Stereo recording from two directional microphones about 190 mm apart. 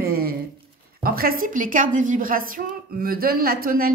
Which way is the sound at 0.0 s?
50° right (ahead or behind).